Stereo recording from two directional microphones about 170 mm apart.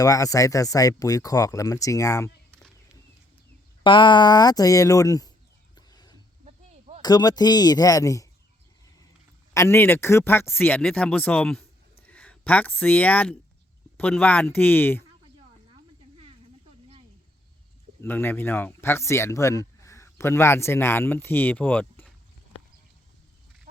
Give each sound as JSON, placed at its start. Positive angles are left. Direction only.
{"t": 0.0, "sound": "speech", "side_deg": 20}
{"t": 3.8, "sound": "speech", "side_deg": 30}
{"t": 5.7, "sound": "a sound", "side_deg": 25}
{"t": 6.4, "sound": "a sound", "side_deg": -40}
{"t": 7.0, "sound": "speech", "side_deg": 25}
{"t": 9.6, "sound": "speech", "side_deg": 15}
{"t": 15.7, "sound": "snake", "side_deg": -35}
{"t": 18.0, "sound": "speech", "side_deg": 10}